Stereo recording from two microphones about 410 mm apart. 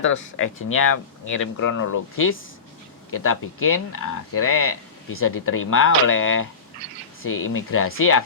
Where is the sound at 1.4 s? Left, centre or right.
Left.